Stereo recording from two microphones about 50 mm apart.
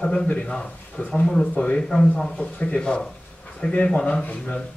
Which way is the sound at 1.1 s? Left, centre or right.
Centre.